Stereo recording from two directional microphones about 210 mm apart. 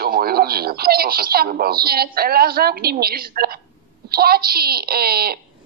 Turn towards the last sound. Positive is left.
turn(degrees=-45)  # may be behind; listen again after turning